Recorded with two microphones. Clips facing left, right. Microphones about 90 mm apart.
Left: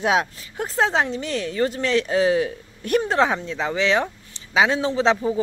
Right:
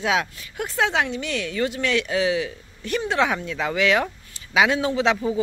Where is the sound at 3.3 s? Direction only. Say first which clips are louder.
Even; 25° left (ahead or behind).